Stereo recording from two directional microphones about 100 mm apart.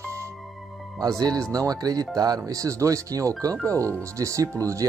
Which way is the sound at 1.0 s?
35° right (ahead or behind).